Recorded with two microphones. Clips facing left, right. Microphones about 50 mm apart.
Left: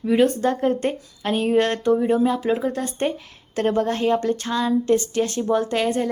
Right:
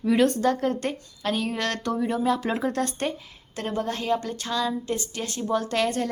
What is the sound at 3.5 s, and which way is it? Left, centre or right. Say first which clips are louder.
Speech: left 8 dB; left.